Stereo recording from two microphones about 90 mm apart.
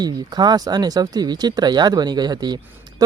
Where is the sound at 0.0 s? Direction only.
50° right (ahead or behind).